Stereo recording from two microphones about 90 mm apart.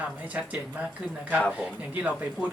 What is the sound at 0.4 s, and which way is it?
Speech, 20° right (ahead or behind).